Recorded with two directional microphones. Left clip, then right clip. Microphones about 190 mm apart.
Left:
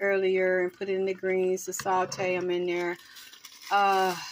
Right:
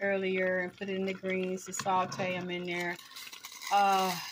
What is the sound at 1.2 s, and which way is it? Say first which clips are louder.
Speech: left 7 dB; 15° left (ahead or behind).